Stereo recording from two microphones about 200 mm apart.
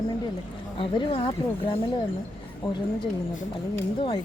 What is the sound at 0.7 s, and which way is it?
Speech, 25° left (ahead or behind).